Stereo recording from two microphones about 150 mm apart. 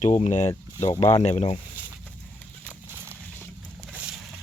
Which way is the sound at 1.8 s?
10° right (ahead or behind).